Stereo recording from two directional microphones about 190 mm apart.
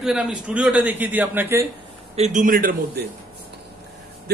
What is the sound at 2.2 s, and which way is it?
Speech, 40° right (ahead or behind).